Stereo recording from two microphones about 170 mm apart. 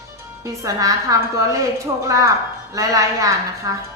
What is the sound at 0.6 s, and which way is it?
A woman's voice, 20° right (ahead or behind).